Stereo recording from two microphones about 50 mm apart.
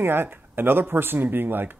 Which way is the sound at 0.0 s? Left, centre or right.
Right.